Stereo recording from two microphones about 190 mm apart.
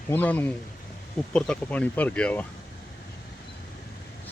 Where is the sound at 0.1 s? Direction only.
10° left (ahead or behind).